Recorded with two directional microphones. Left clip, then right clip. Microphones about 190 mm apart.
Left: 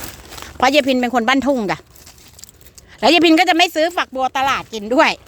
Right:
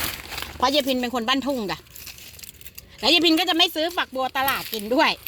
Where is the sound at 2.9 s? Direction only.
35° left (ahead or behind).